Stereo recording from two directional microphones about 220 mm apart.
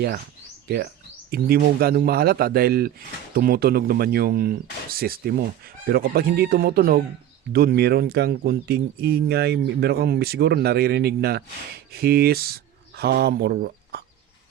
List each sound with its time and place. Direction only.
1.3 s speech: 45° right (ahead or behind)